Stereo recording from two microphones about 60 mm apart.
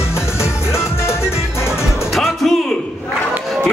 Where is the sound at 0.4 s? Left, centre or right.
Left.